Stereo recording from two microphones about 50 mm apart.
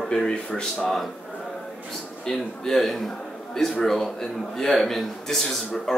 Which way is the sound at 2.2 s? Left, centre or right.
Centre.